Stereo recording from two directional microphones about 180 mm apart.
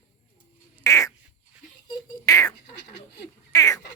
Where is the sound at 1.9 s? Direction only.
20° left (ahead or behind).